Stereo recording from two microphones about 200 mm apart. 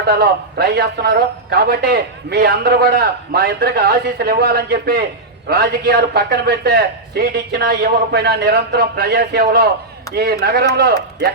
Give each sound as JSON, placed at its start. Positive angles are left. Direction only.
{"t": 0.1, "sound": "a man's voice", "side_deg": -50}